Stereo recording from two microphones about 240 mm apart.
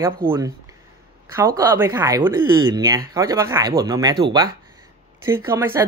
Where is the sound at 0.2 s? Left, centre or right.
Right.